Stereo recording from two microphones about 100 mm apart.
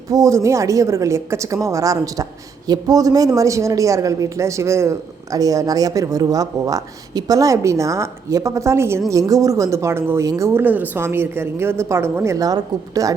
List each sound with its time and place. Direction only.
0.1 s speech: 35° right (ahead or behind)
10.5 s a woman's voice: 20° right (ahead or behind); by 13.1 s 35° right (ahead or behind)